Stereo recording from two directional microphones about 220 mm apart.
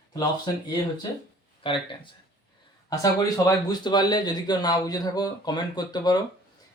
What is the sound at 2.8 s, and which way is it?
A man's voice, 15° left (ahead or behind).